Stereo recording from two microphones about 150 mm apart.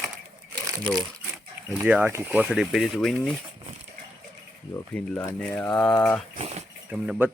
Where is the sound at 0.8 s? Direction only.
Centre (ahead or behind).